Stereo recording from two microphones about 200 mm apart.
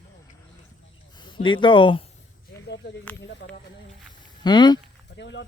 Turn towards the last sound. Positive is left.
turn(degrees=65)  # may be behind; listen again after turning